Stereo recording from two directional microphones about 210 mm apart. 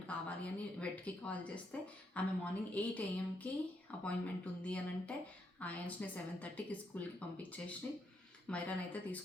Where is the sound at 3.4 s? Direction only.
5° left (ahead or behind).